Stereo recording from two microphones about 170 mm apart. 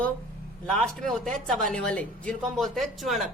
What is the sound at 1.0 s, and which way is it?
Speech, 5° left (ahead or behind).